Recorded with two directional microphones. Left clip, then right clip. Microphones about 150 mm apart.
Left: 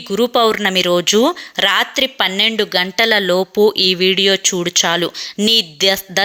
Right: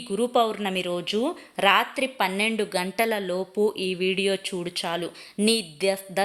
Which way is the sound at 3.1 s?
35° left (ahead or behind).